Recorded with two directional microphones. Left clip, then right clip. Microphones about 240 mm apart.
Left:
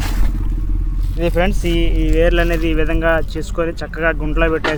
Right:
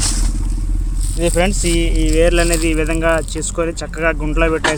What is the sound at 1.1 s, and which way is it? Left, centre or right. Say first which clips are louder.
Speech: right 1 dB; centre.